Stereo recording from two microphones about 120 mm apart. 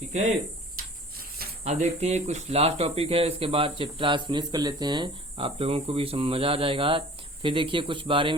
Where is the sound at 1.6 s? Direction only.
65° right (ahead or behind).